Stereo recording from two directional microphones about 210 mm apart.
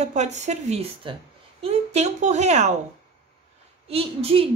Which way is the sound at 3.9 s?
30° right (ahead or behind).